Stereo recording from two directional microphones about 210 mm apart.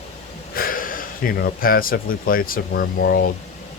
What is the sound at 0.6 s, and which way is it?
Speech, 40° left (ahead or behind).